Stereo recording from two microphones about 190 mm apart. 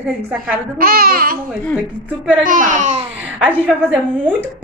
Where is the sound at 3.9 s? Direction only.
10° right (ahead or behind).